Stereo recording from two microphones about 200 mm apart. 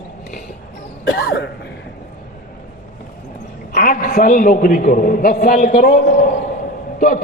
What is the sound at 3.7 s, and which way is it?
A man's voice, 45° left (ahead or behind).